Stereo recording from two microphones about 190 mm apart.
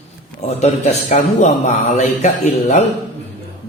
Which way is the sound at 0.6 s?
35° left (ahead or behind).